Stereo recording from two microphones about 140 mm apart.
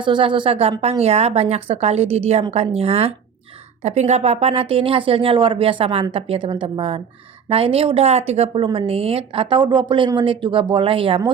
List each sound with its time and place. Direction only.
0.0 s a woman's voice: 35° right (ahead or behind)